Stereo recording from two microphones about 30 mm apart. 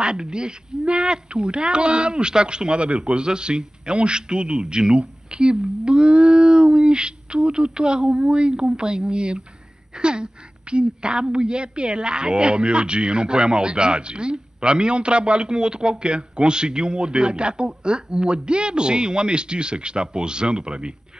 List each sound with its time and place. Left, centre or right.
0.0 s a woman's voice: right